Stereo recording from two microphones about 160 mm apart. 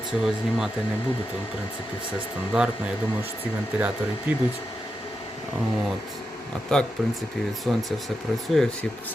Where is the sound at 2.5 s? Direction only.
5° right (ahead or behind).